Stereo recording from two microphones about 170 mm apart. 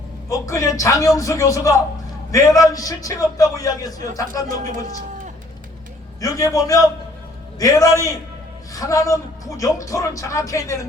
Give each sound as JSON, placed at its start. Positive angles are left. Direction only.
{"t": 0.3, "sound": "a man's voice", "side_deg": 20}
{"t": 6.1, "sound": "a man's voice", "side_deg": 20}